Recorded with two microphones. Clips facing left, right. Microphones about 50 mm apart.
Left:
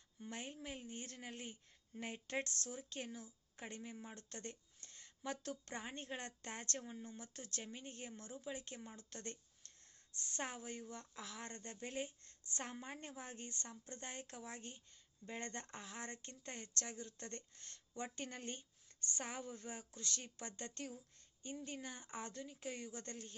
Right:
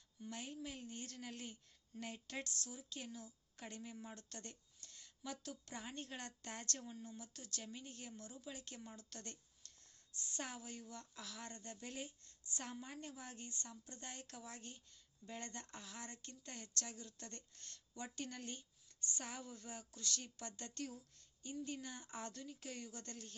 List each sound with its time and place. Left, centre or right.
0.2 s a woman's voice: left